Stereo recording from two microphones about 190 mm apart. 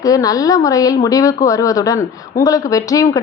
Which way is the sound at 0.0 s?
20° left (ahead or behind).